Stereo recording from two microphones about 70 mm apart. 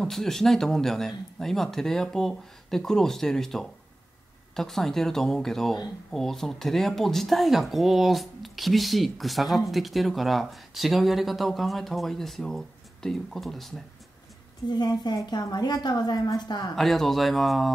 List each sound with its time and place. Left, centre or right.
0.0 s speech: centre
14.7 s a woman's voice: left
15.2 s a woman's voice: left
16.7 s speech: centre